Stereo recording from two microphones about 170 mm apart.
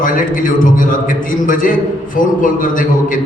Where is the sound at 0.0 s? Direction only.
50° left (ahead or behind).